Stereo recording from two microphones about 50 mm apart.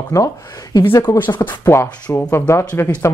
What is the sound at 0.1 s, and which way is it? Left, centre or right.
Speech, left.